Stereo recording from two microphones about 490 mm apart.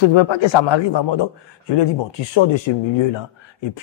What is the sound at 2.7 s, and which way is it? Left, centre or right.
Speech, left.